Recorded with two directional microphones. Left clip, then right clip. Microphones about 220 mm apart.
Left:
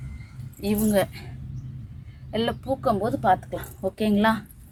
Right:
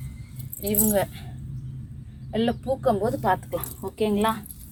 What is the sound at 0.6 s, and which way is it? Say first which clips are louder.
Speech: left 1 dB; 20° left (ahead or behind).